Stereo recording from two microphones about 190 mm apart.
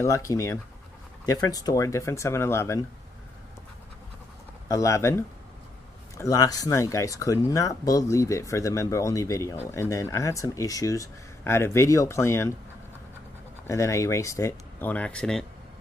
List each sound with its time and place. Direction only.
0.0 s speech: 15° left (ahead or behind)
4.6 s speech: 15° left (ahead or behind)
13.7 s speech: 15° left (ahead or behind)